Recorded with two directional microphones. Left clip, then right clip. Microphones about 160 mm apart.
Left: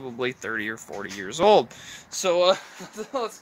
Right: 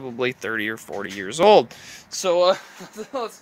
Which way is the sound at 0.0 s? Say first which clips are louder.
Right 4 dB; 30° right (ahead or behind).